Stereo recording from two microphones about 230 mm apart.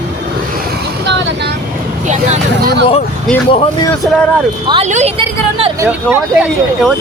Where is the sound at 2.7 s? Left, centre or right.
Left.